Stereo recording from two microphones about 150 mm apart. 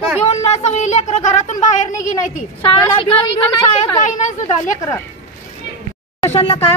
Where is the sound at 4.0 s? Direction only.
55° left (ahead or behind).